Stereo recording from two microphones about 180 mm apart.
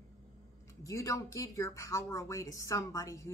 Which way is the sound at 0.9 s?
15° left (ahead or behind).